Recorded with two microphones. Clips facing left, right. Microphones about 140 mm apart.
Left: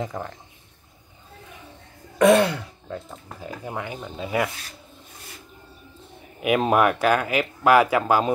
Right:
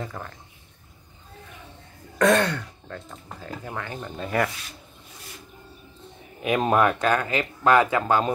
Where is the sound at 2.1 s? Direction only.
10° left (ahead or behind).